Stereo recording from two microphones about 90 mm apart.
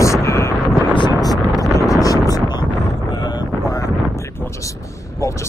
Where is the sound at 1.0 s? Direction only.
50° left (ahead or behind).